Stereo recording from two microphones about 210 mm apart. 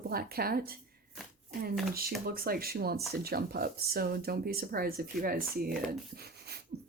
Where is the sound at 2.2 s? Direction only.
45° right (ahead or behind).